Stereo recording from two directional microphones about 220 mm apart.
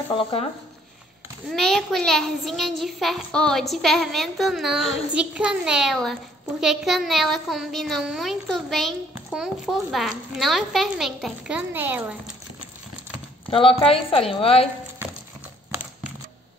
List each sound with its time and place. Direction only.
0.1 s a woman's voice: 25° left (ahead or behind)
1.5 s a child's voice: centre (ahead or behind)
13.5 s a woman's voice: 25° left (ahead or behind)